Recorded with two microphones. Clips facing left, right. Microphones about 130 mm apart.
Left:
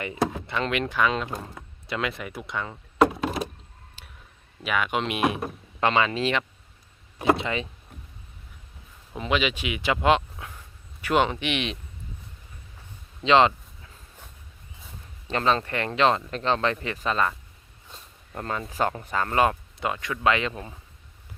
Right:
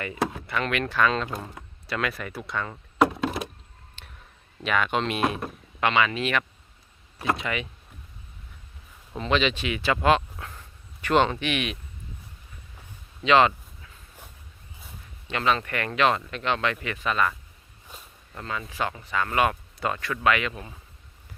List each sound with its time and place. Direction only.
0.0 s speech: 25° left (ahead or behind)
4.0 s a sound: 5° left (ahead or behind)
4.6 s speech: 10° left (ahead or behind)
5.8 s speech: 30° left (ahead or behind)
9.1 s speech: 10° left (ahead or behind)
10.4 s dog: 10° left (ahead or behind)
13.2 s a sound: 25° left (ahead or behind)
15.3 s speech: 35° left (ahead or behind)
18.3 s speech: 40° left (ahead or behind)
19.1 s speech: 35° left (ahead or behind)
19.8 s speech: 20° left (ahead or behind)